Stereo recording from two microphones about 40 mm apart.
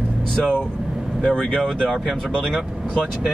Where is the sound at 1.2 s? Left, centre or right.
Left.